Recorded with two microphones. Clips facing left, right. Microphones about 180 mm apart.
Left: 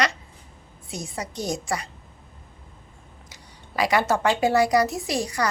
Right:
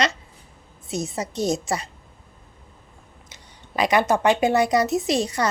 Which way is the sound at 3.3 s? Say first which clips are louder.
Right 3 dB; 20° right (ahead or behind).